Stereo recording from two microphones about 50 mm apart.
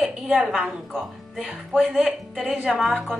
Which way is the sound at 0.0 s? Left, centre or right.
Centre.